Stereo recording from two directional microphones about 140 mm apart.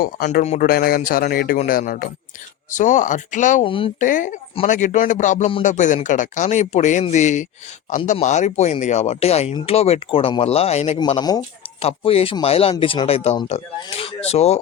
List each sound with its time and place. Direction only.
0.0 s a man's voice: 90° left
2.6 s speech: 60° left (ahead or behind)
3.6 s speech: 40° left (ahead or behind)
4.0 s speech: 70° left (ahead or behind); by 10.9 s 50° left (ahead or behind)
11.2 s speech: 25° left (ahead or behind)
11.8 s speech: 45° left (ahead or behind)